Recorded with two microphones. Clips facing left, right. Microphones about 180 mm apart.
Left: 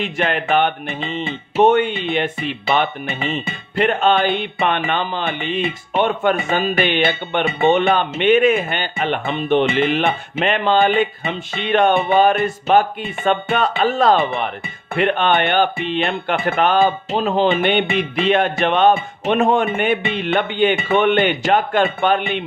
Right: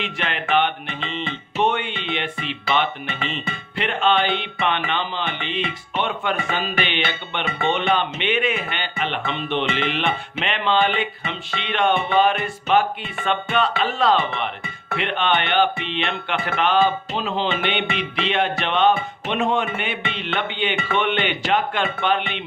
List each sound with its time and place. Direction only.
0.0 s speech: 45° left (ahead or behind)